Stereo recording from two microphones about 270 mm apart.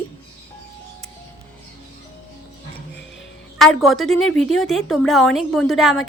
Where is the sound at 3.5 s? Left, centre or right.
Centre.